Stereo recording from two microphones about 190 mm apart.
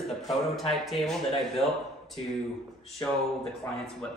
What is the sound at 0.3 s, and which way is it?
Speech, centre (ahead or behind).